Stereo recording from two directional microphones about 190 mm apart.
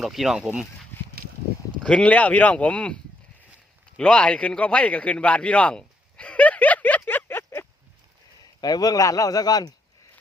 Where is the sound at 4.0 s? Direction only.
5° left (ahead or behind).